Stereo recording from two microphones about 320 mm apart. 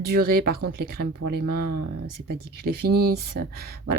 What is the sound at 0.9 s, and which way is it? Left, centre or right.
Speech, right.